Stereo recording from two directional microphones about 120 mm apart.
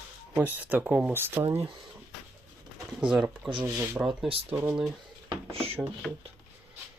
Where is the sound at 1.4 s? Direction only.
60° right (ahead or behind).